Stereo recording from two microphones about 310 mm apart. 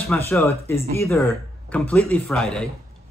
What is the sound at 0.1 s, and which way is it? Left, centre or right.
Speech, centre.